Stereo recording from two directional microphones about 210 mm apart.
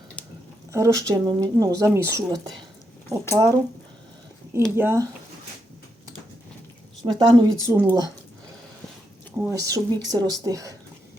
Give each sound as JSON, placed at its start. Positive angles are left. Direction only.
{"t": 0.7, "sound": "speech", "side_deg": -15}
{"t": 4.8, "sound": "speech", "side_deg": -10}
{"t": 7.0, "sound": "speech", "side_deg": -20}
{"t": 9.3, "sound": "speech", "side_deg": -15}